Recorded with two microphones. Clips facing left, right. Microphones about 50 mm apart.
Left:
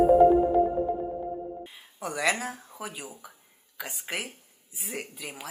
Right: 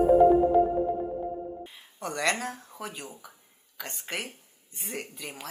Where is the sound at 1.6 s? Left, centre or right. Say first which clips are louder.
Even; centre.